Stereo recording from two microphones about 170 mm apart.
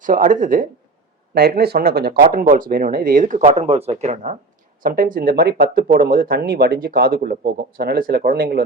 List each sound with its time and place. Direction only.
0.0 s speech: 50° right (ahead or behind)
1.3 s speech: 65° right (ahead or behind); by 4.4 s 45° right (ahead or behind)
4.8 s speech: 55° right (ahead or behind)